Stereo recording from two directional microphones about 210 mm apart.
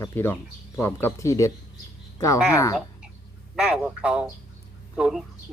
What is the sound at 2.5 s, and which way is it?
Speech, 15° left (ahead or behind).